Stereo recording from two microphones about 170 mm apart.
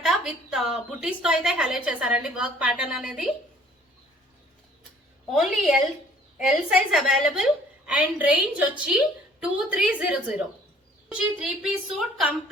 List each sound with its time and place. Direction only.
0.0 s a woman's voice: centre (ahead or behind)
5.3 s a woman's voice: centre (ahead or behind)